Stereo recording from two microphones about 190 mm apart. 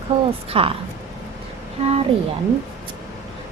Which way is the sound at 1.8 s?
30° right (ahead or behind).